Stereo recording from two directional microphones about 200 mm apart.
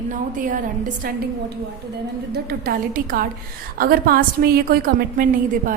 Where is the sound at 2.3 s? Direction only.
50° right (ahead or behind).